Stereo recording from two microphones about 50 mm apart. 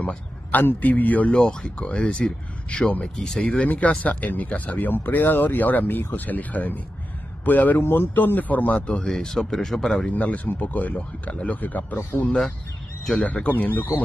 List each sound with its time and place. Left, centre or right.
0.5 s speech: left
1.3 s speech: centre
3.4 s speech: left
7.8 s speech: left
8.1 s speech: left
9.0 s speech: centre
9.9 s speech: left
13.2 s speech: left